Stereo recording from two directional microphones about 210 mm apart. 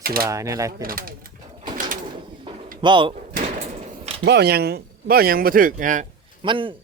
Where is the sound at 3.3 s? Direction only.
35° right (ahead or behind).